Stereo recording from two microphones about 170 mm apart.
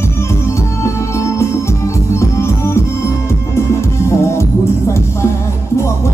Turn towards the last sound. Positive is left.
turn(degrees=15)  # may be behind; listen again after turning